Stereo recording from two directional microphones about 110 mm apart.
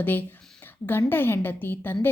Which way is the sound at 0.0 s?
15° left (ahead or behind).